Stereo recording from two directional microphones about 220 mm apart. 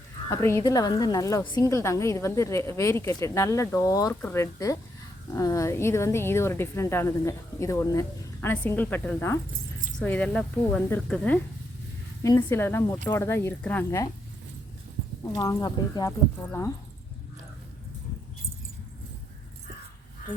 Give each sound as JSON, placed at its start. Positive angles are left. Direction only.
{"t": 0.3, "sound": "a woman's voice", "side_deg": 10}
{"t": 15.4, "sound": "a woman's voice", "side_deg": 20}